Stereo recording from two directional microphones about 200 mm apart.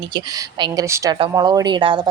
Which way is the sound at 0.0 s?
20° right (ahead or behind).